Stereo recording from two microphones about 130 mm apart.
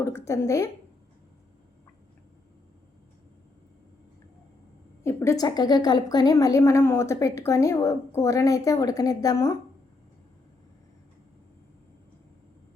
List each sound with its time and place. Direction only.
0.0 s a woman's voice: 20° left (ahead or behind)
5.0 s a woman's voice: 20° left (ahead or behind)
5.5 s a woman's voice: 30° left (ahead or behind)